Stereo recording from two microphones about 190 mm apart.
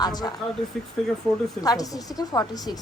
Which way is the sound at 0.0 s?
20° left (ahead or behind).